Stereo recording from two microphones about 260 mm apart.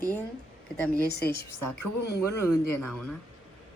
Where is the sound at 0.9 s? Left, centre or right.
Left.